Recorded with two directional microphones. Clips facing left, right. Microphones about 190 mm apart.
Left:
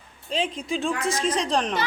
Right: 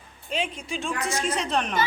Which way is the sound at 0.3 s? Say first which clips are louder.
Left 3 dB; 30° left (ahead or behind).